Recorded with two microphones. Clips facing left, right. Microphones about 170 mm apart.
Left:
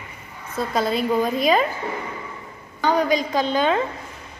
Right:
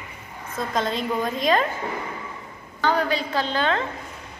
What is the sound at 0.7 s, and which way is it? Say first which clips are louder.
Speech: left 4 dB; 5° left (ahead or behind).